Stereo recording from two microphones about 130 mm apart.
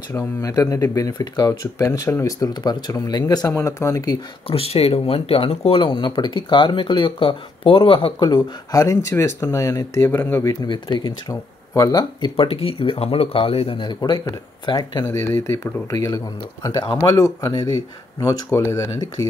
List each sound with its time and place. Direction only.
0.1 s speech: 25° left (ahead or behind)
4.5 s speech: 50° left (ahead or behind); by 19.2 s 30° left (ahead or behind)